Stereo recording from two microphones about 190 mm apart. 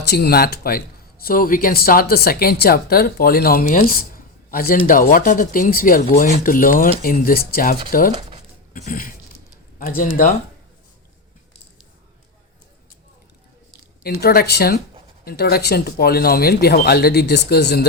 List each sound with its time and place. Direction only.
0.1 s speech: 55° left (ahead or behind)
8.7 s a sound: 45° left (ahead or behind)
9.7 s speech: 50° left (ahead or behind)
14.0 s speech: 55° left (ahead or behind)